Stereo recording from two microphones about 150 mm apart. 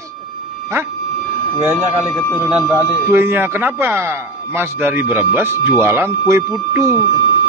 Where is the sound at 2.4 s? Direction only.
5° right (ahead or behind).